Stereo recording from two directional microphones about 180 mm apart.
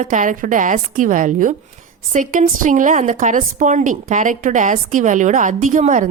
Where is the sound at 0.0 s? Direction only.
45° right (ahead or behind).